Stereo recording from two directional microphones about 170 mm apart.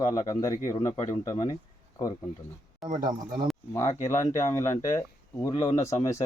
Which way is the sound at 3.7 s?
15° left (ahead or behind).